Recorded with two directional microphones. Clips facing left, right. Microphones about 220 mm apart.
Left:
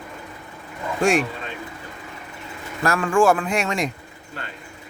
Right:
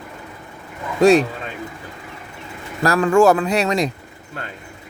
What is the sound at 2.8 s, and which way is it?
Speech, 40° right (ahead or behind).